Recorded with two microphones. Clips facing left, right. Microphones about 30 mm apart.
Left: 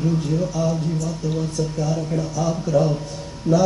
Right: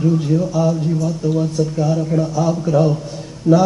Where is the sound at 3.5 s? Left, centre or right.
Centre.